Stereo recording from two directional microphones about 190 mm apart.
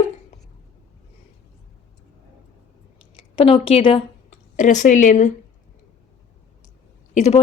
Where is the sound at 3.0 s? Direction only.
30° left (ahead or behind).